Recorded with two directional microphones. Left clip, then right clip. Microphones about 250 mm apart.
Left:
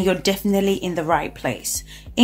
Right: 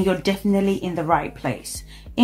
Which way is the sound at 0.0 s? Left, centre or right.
Left.